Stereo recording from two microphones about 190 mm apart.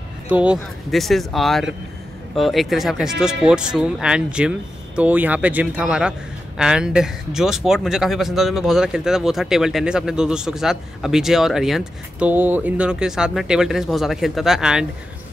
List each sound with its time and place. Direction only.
0.3 s speech: 5° right (ahead or behind)